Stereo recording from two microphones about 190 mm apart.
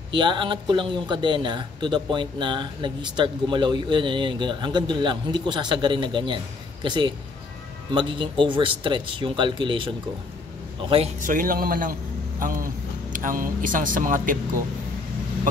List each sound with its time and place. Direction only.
0.1 s speech: 25° right (ahead or behind)
11.2 s speech: 45° right (ahead or behind)